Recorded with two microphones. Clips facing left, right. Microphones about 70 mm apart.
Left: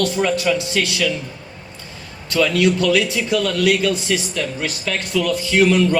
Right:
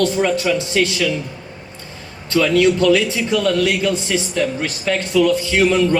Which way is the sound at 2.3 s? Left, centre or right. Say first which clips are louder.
Right 2 dB; right.